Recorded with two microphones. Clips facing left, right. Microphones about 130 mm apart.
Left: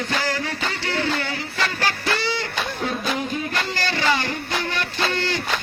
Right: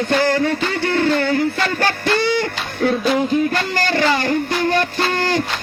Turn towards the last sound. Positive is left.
turn(degrees=-45)  # may be behind; listen again after turning